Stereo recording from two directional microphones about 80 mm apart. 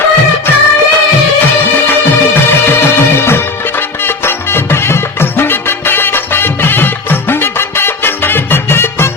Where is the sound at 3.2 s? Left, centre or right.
Left.